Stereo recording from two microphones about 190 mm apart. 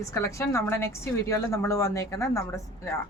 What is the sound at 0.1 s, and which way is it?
Speech, 15° left (ahead or behind).